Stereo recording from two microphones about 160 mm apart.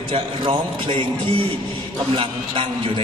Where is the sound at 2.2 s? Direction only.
35° right (ahead or behind).